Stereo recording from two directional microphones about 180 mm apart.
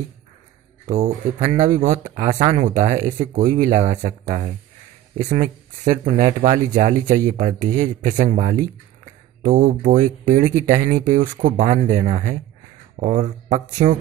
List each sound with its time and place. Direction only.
0.8 s speech: 35° right (ahead or behind)
5.3 s speech: 45° right (ahead or behind)